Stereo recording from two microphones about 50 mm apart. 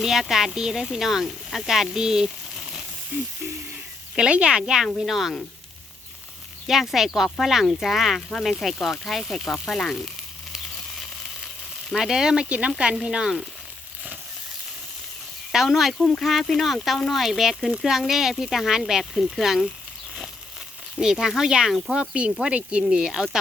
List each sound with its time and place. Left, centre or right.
0.0 s speech: centre
4.2 s speech: centre
6.7 s speech: centre
10.5 s sizzle: centre
11.9 s speech: centre
12.5 s speech: right
15.5 s speech: centre
16.0 s speech: centre
21.0 s speech: centre